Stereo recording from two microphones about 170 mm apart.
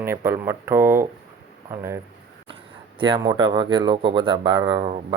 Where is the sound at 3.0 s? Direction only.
25° right (ahead or behind).